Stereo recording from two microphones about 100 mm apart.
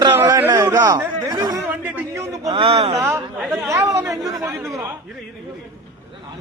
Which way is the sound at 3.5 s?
25° right (ahead or behind).